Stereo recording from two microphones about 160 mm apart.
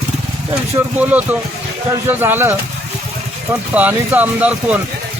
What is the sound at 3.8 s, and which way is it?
Speech, 10° right (ahead or behind).